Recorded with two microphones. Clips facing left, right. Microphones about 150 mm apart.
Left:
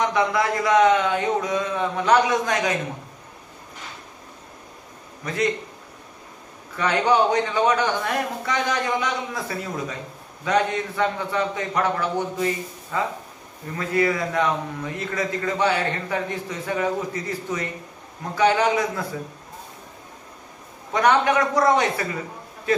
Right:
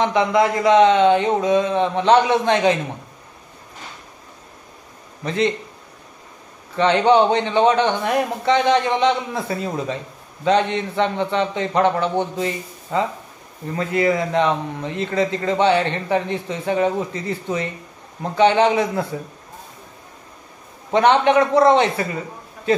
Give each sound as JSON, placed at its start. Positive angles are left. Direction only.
{"t": 0.0, "sound": "a man's voice", "side_deg": -20}
{"t": 5.2, "sound": "a man's voice", "side_deg": -25}
{"t": 6.8, "sound": "a man's voice", "side_deg": -25}
{"t": 20.9, "sound": "a man's voice", "side_deg": -25}